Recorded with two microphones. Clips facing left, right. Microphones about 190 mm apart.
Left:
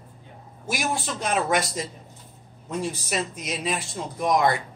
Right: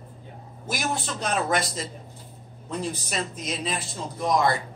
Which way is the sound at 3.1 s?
10° left (ahead or behind).